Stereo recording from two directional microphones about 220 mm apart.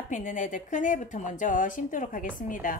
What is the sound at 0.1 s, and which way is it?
Speech, 35° left (ahead or behind).